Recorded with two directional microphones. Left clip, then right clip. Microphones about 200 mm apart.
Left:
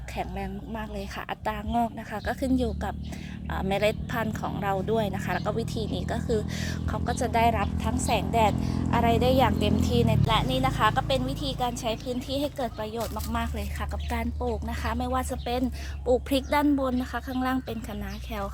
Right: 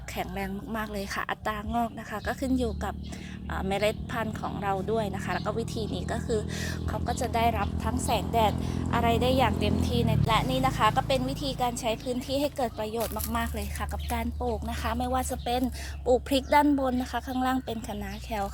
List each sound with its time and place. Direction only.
0.2 s speech: 15° right (ahead or behind); by 10.2 s 20° left (ahead or behind)
10.2 s speech: centre (ahead or behind)